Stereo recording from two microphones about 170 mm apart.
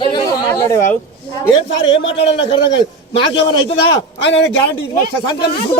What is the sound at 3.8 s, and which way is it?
Speech, 90° left.